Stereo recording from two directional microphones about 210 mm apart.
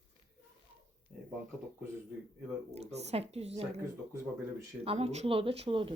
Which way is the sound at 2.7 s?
30° right (ahead or behind).